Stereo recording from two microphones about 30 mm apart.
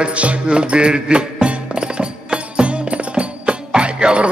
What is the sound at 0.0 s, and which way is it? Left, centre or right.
Music, right.